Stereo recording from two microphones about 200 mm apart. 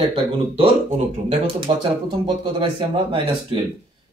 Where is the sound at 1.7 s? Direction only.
25° right (ahead or behind).